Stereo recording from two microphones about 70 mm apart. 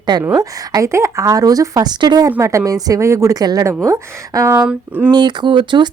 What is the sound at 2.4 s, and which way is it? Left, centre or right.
Speech, right.